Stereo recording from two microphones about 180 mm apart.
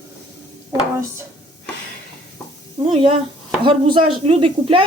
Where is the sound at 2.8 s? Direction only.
30° right (ahead or behind).